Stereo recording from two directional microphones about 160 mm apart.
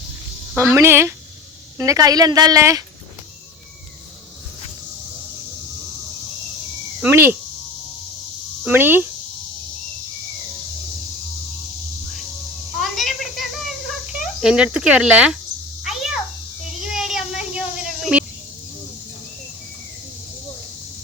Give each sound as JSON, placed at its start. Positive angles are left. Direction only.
{"t": 0.5, "sound": "a woman's voice", "side_deg": -15}
{"t": 7.0, "sound": "a woman's voice", "side_deg": -15}
{"t": 8.6, "sound": "a woman's voice", "side_deg": -10}
{"t": 12.8, "sound": "a sound", "side_deg": 0}
{"t": 14.1, "sound": "speech", "side_deg": -5}
{"t": 15.8, "sound": "a sound", "side_deg": 0}
{"t": 18.0, "sound": "speech", "side_deg": -5}